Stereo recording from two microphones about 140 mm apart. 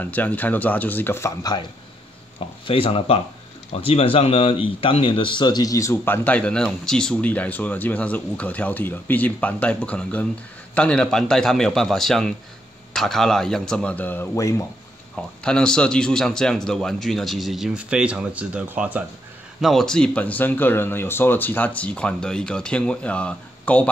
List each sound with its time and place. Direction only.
0.0 s speech: 10° left (ahead or behind)
2.6 s a man's voice: 40° left (ahead or behind); by 14.7 s 20° left (ahead or behind)
15.1 s a man's voice: 5° left (ahead or behind); by 19.0 s 10° right (ahead or behind)
19.6 s speech: centre (ahead or behind)